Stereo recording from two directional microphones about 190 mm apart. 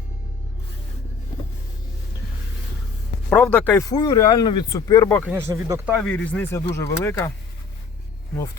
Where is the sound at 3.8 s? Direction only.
20° left (ahead or behind).